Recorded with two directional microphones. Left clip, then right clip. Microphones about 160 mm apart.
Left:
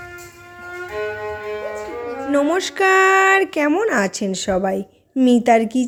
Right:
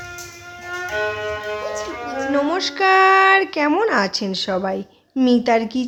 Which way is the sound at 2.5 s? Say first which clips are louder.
Right 2 dB; 30° left (ahead or behind).